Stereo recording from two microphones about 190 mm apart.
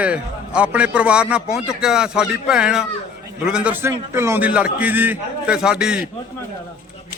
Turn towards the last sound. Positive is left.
turn(degrees=-5)  # may be behind; listen again after turning